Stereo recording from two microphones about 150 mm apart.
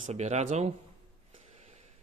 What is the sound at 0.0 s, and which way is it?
Speech, 50° right (ahead or behind).